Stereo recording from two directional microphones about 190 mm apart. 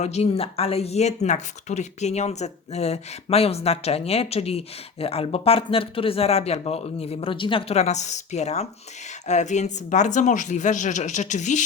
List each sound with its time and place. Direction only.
0.0 s speech: 35° left (ahead or behind)